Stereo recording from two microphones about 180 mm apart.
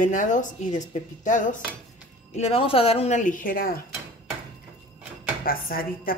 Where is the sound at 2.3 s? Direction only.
35° left (ahead or behind); by 3.8 s 55° left (ahead or behind).